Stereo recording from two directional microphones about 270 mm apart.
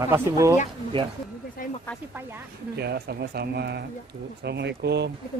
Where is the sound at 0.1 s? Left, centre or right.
Centre.